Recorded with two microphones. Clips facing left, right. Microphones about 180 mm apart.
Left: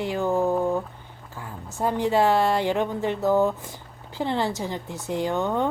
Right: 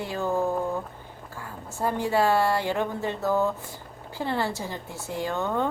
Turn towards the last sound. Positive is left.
turn(degrees=15)  # may be behind; listen again after turning